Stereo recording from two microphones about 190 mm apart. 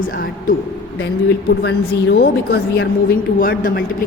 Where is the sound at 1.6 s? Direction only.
60° left (ahead or behind).